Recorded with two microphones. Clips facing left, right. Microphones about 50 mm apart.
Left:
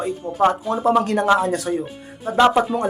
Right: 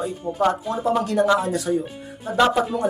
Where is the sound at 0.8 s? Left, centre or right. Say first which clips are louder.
Left 2 dB; left.